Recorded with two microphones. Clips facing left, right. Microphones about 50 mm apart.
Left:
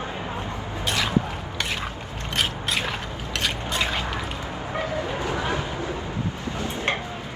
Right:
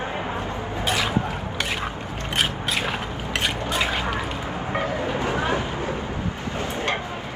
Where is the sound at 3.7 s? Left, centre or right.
Centre.